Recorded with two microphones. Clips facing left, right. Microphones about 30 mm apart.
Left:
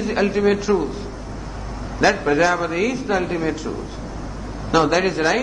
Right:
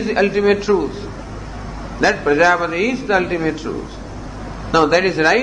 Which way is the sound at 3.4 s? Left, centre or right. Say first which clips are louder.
Right 3 dB; centre.